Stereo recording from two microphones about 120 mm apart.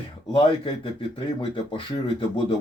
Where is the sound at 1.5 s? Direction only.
45° left (ahead or behind).